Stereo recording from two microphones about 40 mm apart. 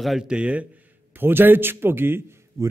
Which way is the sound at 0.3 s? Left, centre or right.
Right.